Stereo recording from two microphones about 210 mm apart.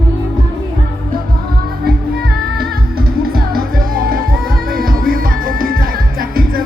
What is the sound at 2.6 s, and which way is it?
Music, 45° right (ahead or behind).